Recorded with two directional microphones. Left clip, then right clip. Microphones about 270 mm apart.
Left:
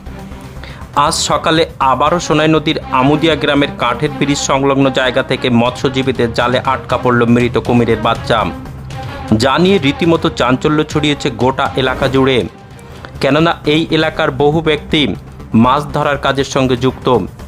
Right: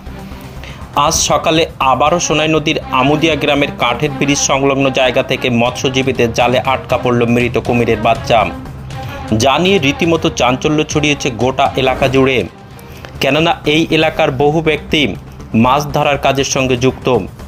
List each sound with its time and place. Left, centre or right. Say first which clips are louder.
1.3 s speech: even; centre
9.0 s music: even; centre
9.4 s speech: right 1 dB; centre
10.8 s speech: right 1 dB; left
11.4 s speech: right 1 dB; centre